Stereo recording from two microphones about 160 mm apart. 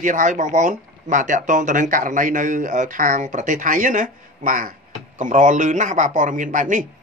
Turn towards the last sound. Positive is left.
turn(degrees=-55)  # may be behind; listen again after turning